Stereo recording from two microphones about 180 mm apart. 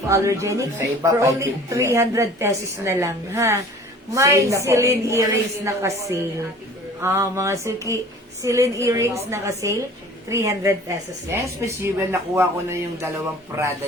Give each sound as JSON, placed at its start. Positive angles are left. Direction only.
{"t": 0.1, "sound": "speech", "side_deg": -15}